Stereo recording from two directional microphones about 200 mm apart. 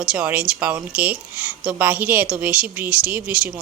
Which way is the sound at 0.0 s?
5° right (ahead or behind).